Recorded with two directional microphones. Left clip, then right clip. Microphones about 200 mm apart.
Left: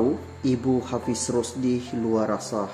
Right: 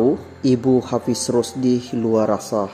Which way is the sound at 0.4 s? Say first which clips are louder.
Right 7 dB; 35° right (ahead or behind).